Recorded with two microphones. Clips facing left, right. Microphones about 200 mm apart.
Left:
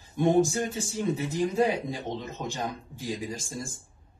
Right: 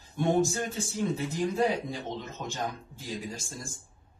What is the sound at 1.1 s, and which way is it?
Speech, 15° left (ahead or behind).